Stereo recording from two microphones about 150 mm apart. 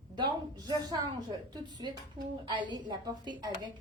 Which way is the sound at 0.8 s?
25° right (ahead or behind).